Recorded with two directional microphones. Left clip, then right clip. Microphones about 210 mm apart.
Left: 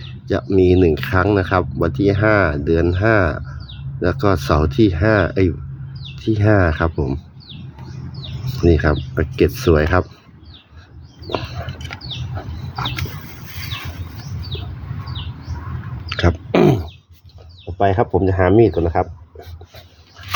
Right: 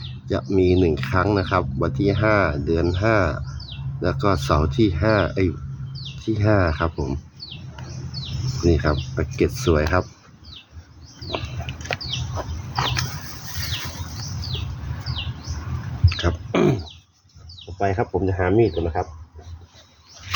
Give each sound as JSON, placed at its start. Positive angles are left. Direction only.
{"t": 0.3, "sound": "speech", "side_deg": 20}
{"t": 8.6, "sound": "speech", "side_deg": 20}
{"t": 16.0, "sound": "a sound", "side_deg": 20}
{"t": 17.7, "sound": "speech", "side_deg": 35}